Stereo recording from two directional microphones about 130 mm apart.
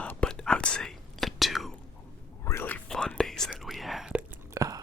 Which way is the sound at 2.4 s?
15° left (ahead or behind).